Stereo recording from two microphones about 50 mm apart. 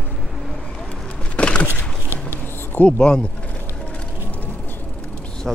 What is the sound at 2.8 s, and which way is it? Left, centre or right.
Speech, centre.